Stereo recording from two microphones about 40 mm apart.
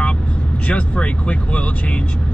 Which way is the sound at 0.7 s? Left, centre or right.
Left.